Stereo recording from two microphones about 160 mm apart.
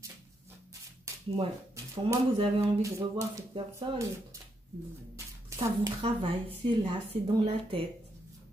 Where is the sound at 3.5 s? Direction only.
30° right (ahead or behind).